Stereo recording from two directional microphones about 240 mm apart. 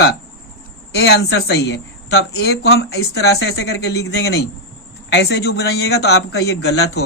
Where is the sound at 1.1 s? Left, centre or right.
Left.